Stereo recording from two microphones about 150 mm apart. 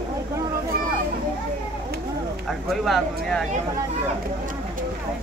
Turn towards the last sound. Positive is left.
turn(degrees=0)  # may be behind; listen again after turning